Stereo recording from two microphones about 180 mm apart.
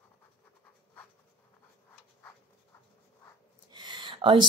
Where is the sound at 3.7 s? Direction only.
25° right (ahead or behind).